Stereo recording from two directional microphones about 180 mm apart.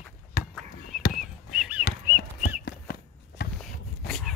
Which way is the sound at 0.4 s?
50° left (ahead or behind).